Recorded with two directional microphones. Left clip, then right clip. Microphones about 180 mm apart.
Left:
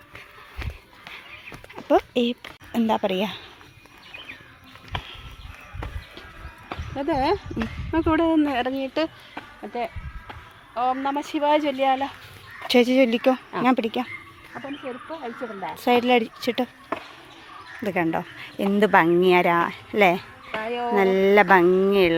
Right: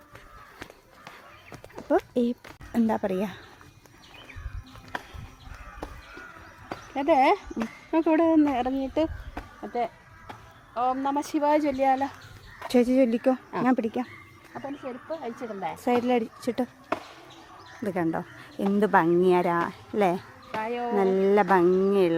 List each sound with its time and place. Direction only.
2.2 s speech: centre (ahead or behind)
4.9 s a sound: 20° left (ahead or behind)
6.9 s speech: 20° right (ahead or behind)
9.3 s music: 5° left (ahead or behind)
10.8 s speech: 15° left (ahead or behind)
12.6 s speech: centre (ahead or behind)
16.4 s speech: centre (ahead or behind)
20.6 s music: 25° left (ahead or behind)
20.9 s speech: 5° left (ahead or behind)